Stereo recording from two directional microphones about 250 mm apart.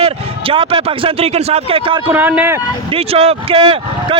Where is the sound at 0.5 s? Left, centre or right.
Right.